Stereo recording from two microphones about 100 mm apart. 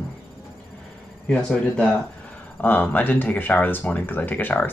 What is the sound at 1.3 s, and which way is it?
Speech, 10° left (ahead or behind).